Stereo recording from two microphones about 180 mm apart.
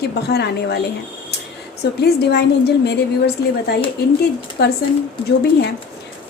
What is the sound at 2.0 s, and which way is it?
A woman's voice, 65° left (ahead or behind).